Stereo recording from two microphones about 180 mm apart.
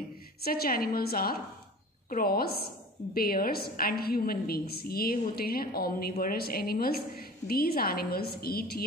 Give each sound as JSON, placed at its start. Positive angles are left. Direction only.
{"t": 0.4, "sound": "a woman's voice", "side_deg": 55}